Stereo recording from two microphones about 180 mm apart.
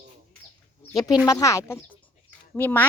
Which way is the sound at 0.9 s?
Centre (ahead or behind).